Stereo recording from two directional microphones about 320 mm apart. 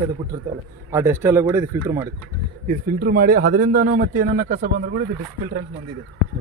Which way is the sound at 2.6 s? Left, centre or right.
Right.